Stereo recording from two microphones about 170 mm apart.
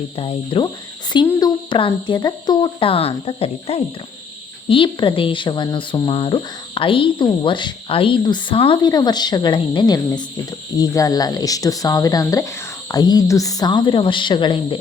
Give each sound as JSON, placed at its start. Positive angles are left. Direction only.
{"t": 0.2, "sound": "speech", "side_deg": 30}